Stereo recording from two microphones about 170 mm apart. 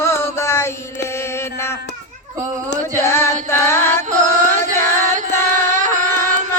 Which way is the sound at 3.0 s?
15° left (ahead or behind).